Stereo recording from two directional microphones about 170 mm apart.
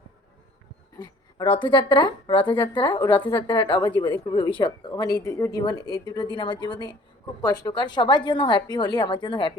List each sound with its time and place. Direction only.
0.9 s speech: 25° left (ahead or behind)